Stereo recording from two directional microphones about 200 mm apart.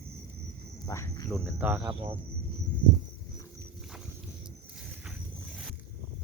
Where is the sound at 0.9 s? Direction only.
15° left (ahead or behind).